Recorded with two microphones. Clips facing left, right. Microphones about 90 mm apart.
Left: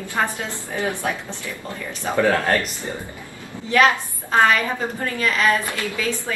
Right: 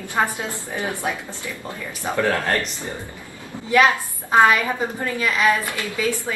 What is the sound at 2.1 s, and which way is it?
Speech, 15° left (ahead or behind).